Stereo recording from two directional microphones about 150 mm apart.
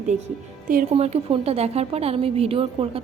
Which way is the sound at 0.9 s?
45° right (ahead or behind).